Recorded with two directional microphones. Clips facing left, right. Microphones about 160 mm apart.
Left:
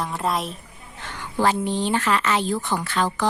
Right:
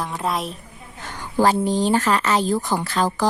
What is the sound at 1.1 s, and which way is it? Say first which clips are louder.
Speech: right 3 dB; 40° right (ahead or behind).